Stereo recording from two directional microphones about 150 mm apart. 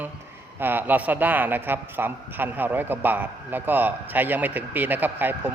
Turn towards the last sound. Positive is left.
turn(degrees=-10)  # may be behind; listen again after turning